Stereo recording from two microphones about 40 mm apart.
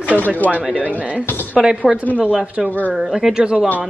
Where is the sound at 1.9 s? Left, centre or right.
Centre.